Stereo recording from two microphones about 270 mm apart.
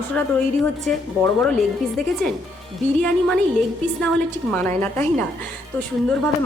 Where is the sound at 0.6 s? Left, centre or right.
Centre.